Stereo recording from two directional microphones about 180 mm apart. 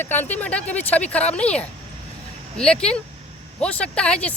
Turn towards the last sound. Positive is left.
turn(degrees=5)  # may be behind; listen again after turning